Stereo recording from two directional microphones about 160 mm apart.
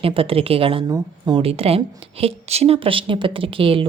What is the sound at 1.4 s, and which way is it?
Speech, 40° right (ahead or behind).